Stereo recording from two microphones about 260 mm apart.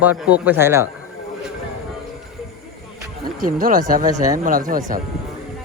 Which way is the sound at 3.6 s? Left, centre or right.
Right.